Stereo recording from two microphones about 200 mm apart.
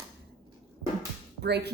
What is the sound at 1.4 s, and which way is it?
Speech, 55° right (ahead or behind).